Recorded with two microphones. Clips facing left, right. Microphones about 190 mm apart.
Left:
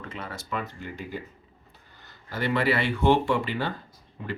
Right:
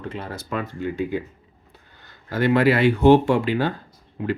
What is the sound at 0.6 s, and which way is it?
Speech, 55° right (ahead or behind).